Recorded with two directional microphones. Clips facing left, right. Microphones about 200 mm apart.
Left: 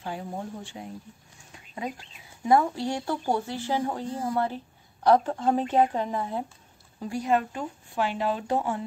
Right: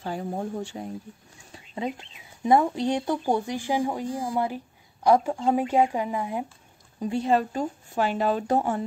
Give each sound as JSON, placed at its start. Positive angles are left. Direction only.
{"t": 0.0, "sound": "speech", "side_deg": -40}
{"t": 1.5, "sound": "speech", "side_deg": -25}
{"t": 7.0, "sound": "speech", "side_deg": -25}